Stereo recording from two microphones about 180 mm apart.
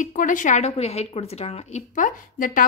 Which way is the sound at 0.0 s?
45° left (ahead or behind).